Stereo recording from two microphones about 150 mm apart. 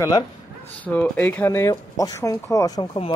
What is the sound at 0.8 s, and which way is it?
Speech, 10° left (ahead or behind).